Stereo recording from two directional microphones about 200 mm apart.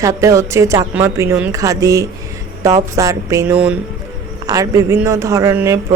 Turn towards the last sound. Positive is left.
turn(degrees=-10)  # may be behind; listen again after turning